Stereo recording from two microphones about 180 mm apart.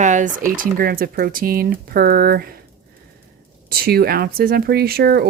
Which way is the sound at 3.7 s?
60° right (ahead or behind).